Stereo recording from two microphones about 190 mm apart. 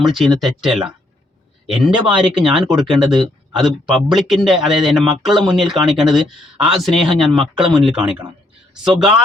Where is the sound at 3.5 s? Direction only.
Centre (ahead or behind).